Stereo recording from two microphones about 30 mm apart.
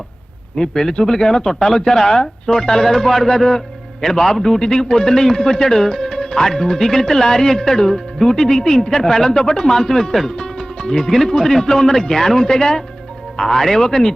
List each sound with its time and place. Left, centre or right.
0.5 s speech: centre
10.2 s music: left
11.2 s speech: centre